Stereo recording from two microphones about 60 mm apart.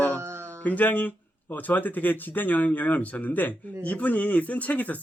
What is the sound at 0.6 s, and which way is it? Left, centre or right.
Speech, left.